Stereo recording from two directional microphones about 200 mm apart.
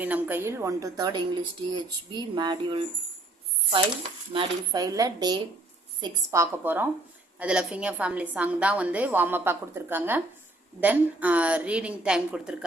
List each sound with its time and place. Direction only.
0.0 s a woman's voice: 10° right (ahead or behind)
4.3 s a woman's voice: 20° right (ahead or behind); by 12.5 s 5° right (ahead or behind)